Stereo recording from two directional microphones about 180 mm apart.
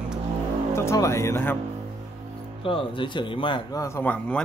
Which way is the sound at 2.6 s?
30° left (ahead or behind).